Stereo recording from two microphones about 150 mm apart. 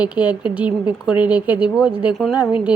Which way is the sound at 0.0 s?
10° right (ahead or behind).